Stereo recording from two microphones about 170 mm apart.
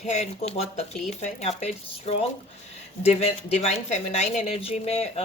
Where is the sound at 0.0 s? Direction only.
40° left (ahead or behind).